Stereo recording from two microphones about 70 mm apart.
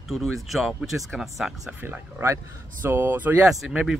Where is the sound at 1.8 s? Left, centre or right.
Right.